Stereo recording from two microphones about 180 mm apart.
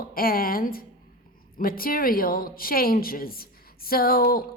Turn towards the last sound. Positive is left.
turn(degrees=55)  # may be behind; listen again after turning